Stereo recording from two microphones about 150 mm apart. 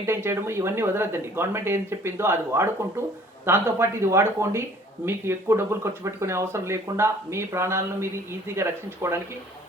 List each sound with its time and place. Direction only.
0.0 s speech: 15° right (ahead or behind)